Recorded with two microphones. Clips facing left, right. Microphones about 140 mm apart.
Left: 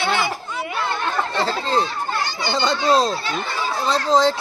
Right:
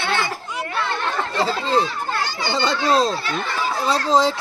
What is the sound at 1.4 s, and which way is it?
Speech, 5° right (ahead or behind).